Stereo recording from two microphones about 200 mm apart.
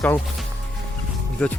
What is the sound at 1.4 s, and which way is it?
Speech, 5° left (ahead or behind).